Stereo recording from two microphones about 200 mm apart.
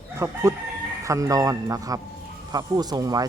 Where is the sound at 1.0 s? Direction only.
15° right (ahead or behind).